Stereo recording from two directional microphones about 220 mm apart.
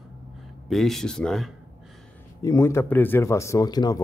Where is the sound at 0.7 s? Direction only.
Centre (ahead or behind).